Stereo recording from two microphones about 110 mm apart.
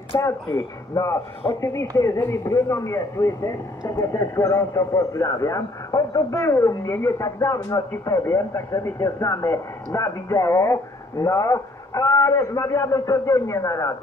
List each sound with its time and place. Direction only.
0.1 s speech: 30° left (ahead or behind)